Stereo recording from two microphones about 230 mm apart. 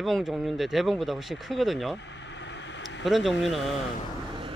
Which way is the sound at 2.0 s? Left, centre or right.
Left.